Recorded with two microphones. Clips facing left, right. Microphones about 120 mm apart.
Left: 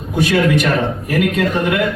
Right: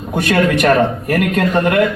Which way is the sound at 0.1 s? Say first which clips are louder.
Even; 55° right (ahead or behind).